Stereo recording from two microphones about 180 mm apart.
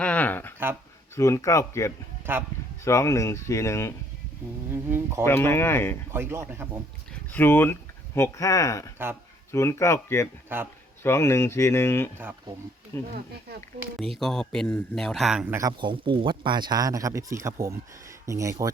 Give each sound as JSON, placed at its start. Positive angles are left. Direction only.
{"t": 0.0, "sound": "a sound", "side_deg": 10}
{"t": 1.1, "sound": "speech", "side_deg": 15}
{"t": 2.3, "sound": "speech", "side_deg": -10}
{"t": 2.8, "sound": "speech", "side_deg": 15}
{"t": 4.7, "sound": "speech", "side_deg": -15}
{"t": 5.2, "sound": "speech", "side_deg": 15}
{"t": 6.1, "sound": "speech", "side_deg": -15}
{"t": 7.3, "sound": "speech", "side_deg": 10}
{"t": 10.5, "sound": "speech", "side_deg": -10}
{"t": 11.0, "sound": "speech", "side_deg": 15}
{"t": 14.0, "sound": "speech", "side_deg": 0}
{"t": 15.5, "sound": "speech", "side_deg": -25}